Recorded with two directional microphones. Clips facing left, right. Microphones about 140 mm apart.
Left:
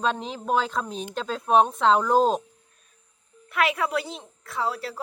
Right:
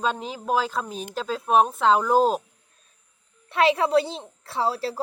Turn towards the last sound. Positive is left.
turn(degrees=-30)  # may be behind; listen again after turning